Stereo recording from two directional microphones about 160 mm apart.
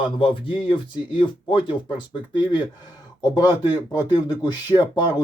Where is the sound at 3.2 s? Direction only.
25° left (ahead or behind).